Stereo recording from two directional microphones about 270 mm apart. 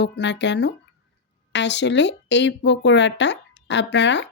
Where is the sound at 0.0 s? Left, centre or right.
Left.